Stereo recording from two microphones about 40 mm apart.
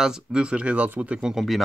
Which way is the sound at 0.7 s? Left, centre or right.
Right.